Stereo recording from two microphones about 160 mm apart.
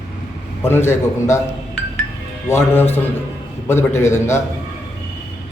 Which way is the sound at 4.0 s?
15° left (ahead or behind).